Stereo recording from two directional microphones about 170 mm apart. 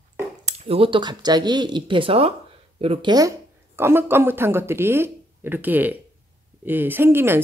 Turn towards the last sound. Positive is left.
turn(degrees=-15)  # may be behind; listen again after turning